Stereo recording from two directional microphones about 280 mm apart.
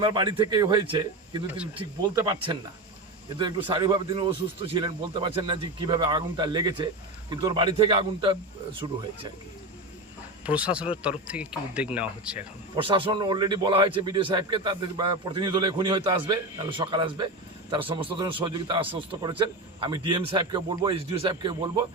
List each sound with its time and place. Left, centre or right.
0.0 s a man's voice: centre
10.4 s speech: centre
12.7 s a man's voice: centre